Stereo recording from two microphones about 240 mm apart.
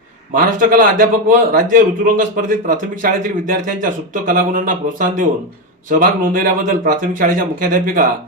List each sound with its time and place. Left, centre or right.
0.3 s a man's voice: right